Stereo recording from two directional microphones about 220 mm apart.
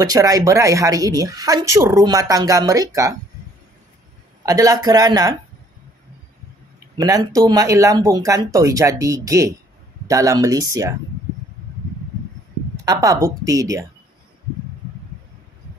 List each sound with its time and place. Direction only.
0.0 s speech: 15° right (ahead or behind)
4.4 s speech: 15° right (ahead or behind)
7.0 s speech: 15° right (ahead or behind)
12.8 s speech: 15° right (ahead or behind)